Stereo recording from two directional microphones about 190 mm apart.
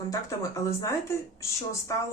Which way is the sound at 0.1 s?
15° left (ahead or behind).